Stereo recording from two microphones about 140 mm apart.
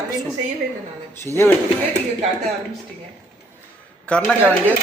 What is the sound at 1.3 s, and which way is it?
Speech, 15° left (ahead or behind).